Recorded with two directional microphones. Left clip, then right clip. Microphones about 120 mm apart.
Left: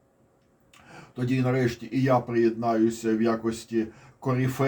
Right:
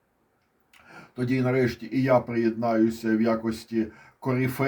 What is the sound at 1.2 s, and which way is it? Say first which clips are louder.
Speech: right 1 dB; 55° right (ahead or behind).